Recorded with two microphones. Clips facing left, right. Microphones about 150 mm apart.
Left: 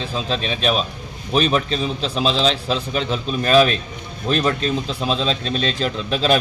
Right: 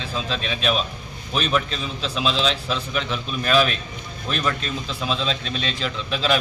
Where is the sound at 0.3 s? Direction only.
35° left (ahead or behind).